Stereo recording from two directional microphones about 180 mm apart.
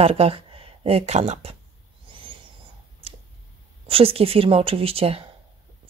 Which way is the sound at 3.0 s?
35° right (ahead or behind).